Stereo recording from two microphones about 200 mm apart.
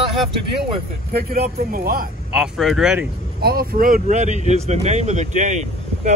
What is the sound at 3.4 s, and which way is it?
Speech, 50° right (ahead or behind).